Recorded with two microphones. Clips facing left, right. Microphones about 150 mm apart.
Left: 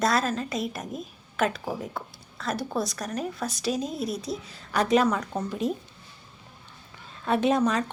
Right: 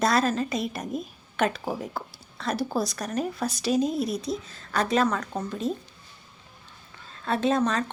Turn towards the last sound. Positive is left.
turn(degrees=10)  # may be behind; listen again after turning